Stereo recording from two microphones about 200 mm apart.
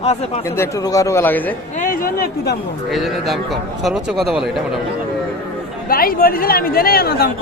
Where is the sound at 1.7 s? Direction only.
40° left (ahead or behind).